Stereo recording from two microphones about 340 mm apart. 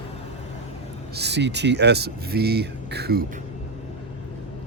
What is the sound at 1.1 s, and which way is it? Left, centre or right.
Speech, right.